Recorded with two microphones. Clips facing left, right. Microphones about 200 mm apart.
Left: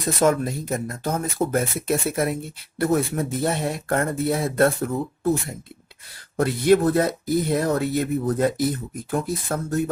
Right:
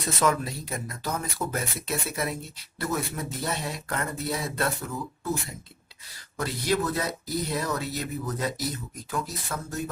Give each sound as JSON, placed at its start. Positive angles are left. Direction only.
{"t": 0.2, "sound": "speech", "side_deg": 50}